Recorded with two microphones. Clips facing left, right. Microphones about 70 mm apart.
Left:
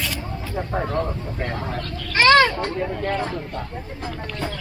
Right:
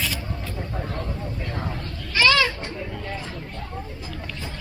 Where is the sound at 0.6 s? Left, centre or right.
Left.